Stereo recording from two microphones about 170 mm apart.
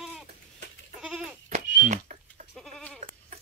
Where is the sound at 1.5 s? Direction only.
45° right (ahead or behind).